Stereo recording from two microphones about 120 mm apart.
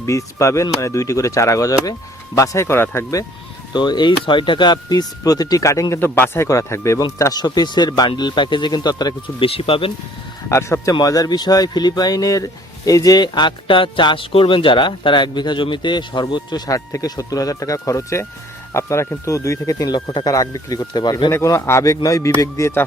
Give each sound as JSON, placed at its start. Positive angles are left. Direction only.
{"t": 0.0, "sound": "speech", "side_deg": 25}
{"t": 3.7, "sound": "speech", "side_deg": 35}
{"t": 10.5, "sound": "speech", "side_deg": 25}
{"t": 21.3, "sound": "speech", "side_deg": 25}